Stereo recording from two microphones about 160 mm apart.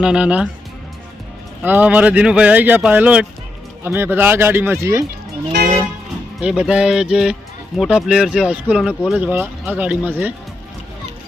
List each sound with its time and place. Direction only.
0.0 s speech: 5° right (ahead or behind)
1.6 s speech: 10° right (ahead or behind)
5.5 s music: 90° right
6.4 s speech: 5° right (ahead or behind)